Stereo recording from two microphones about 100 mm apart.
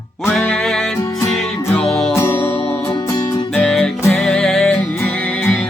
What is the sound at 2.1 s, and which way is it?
Music, 25° left (ahead or behind).